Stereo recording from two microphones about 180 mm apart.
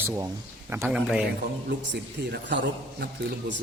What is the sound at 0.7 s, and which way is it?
Speech, 15° right (ahead or behind).